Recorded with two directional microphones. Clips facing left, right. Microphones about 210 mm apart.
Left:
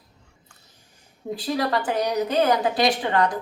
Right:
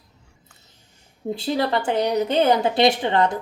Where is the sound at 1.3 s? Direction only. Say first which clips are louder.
Right 2 dB; 25° right (ahead or behind).